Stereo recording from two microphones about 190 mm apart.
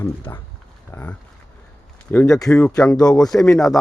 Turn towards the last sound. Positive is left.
turn(degrees=0)  # may be behind; listen again after turning